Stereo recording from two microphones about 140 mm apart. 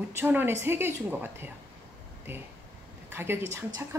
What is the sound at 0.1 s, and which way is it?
A woman's voice, 15° right (ahead or behind).